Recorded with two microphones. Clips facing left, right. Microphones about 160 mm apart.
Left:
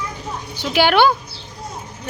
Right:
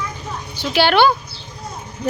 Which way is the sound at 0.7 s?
10° left (ahead or behind).